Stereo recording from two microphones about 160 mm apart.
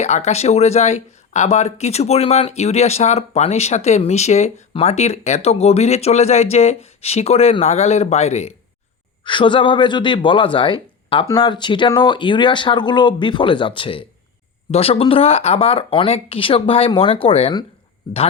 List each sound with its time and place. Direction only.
0.0 s speech: 45° left (ahead or behind)
9.2 s speech: 30° left (ahead or behind)